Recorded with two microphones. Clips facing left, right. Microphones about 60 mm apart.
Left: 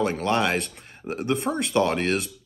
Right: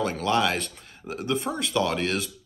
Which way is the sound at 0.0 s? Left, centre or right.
Left.